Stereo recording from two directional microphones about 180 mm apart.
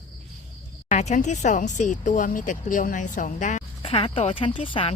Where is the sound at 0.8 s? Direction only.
40° left (ahead or behind).